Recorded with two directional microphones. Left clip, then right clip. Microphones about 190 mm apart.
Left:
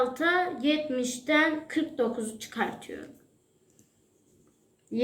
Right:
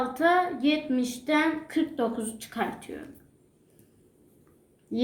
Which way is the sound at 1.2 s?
40° right (ahead or behind).